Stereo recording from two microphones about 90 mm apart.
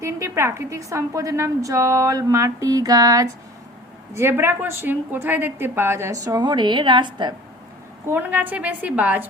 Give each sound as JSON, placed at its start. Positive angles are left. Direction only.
{"t": 0.0, "sound": "a woman's voice", "side_deg": -30}
{"t": 4.1, "sound": "a woman's voice", "side_deg": -30}
{"t": 6.1, "sound": "a woman's voice", "side_deg": -45}
{"t": 8.0, "sound": "a woman's voice", "side_deg": -20}